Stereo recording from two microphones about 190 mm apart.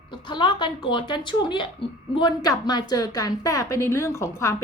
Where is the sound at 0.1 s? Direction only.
25° left (ahead or behind).